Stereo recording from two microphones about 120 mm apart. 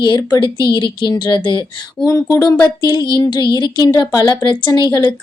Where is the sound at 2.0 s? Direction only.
30° left (ahead or behind).